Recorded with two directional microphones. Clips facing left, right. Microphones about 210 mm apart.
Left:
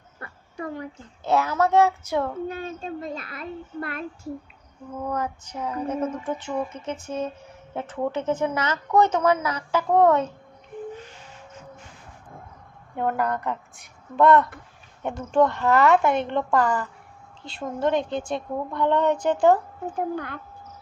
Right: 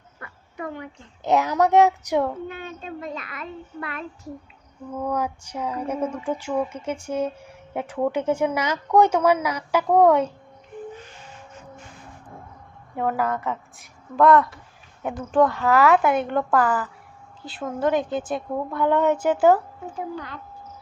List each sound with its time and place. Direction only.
0.2 s dog: 30° left (ahead or behind)
0.6 s a child's voice: 35° left (ahead or behind)
1.2 s a sound: 15° right (ahead or behind)
2.5 s a child's voice: 40° left (ahead or behind)
4.9 s a sound: 10° right (ahead or behind)
13.0 s a woman's voice: centre (ahead or behind)
20.0 s speech: 55° left (ahead or behind)